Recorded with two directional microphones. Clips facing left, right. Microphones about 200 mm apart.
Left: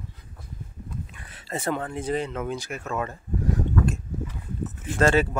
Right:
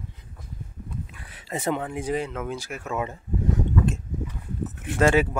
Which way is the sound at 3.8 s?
25° right (ahead or behind).